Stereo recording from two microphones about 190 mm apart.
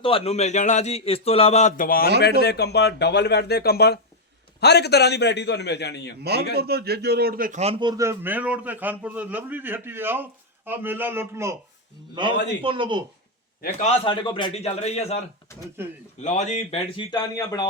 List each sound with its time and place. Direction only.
0.0 s a man's voice: 30° left (ahead or behind); by 2.0 s 45° left (ahead or behind)
2.2 s speech: 60° left (ahead or behind)
6.2 s a man's voice: 55° right (ahead or behind)
7.6 s a man's voice: 25° right (ahead or behind)
12.1 s speech: 25° right (ahead or behind)
13.7 s a man's voice: 35° left (ahead or behind)
14.1 s a man's voice: 25° left (ahead or behind)
15.8 s a man's voice: 10° right (ahead or behind)
16.2 s a man's voice: 40° left (ahead or behind)
17.1 s speech: 20° left (ahead or behind)